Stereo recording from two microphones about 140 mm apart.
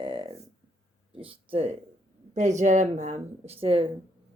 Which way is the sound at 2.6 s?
60° right (ahead or behind).